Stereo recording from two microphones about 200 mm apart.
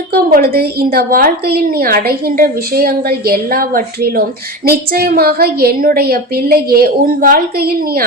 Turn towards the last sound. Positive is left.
turn(degrees=-50)  # may be behind; listen again after turning